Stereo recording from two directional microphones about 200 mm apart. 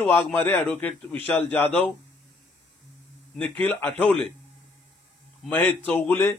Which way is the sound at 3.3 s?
5° left (ahead or behind).